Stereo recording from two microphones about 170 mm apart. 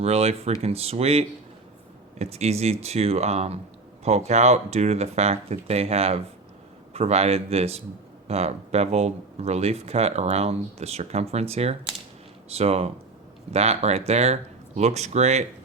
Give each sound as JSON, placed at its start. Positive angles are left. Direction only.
{"t": 0.0, "sound": "speech", "side_deg": -40}